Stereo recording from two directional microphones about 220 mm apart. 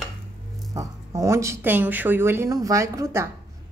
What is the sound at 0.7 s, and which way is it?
Speech, 15° right (ahead or behind).